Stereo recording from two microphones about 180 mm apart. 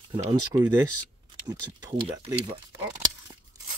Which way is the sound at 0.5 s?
20° right (ahead or behind).